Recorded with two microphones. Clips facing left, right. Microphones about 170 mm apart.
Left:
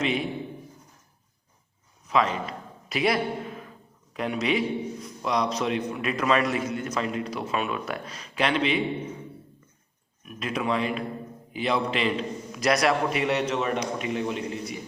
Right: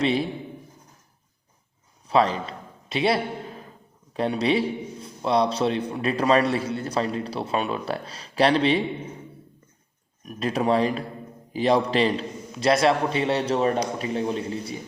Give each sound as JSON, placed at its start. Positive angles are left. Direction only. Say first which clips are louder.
{"t": 0.0, "sound": "a man's voice", "louder": "right 4 dB", "side_deg": -35}
{"t": 2.0, "sound": "a man's voice", "louder": "right 3 dB", "side_deg": -30}
{"t": 10.2, "sound": "a man's voice", "louder": "right 5 dB", "side_deg": -35}